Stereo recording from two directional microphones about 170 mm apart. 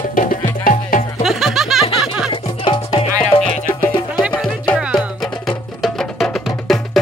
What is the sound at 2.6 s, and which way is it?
Music, 30° left (ahead or behind).